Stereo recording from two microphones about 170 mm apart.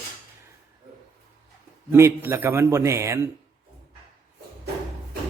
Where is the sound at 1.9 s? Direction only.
15° right (ahead or behind).